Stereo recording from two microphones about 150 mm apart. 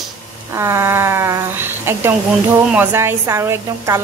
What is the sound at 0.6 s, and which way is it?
Speech, 15° right (ahead or behind).